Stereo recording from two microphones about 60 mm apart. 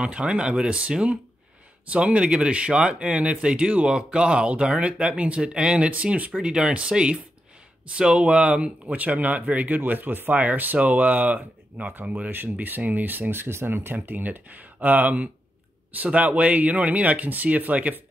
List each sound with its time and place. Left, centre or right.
0.0 s speech: centre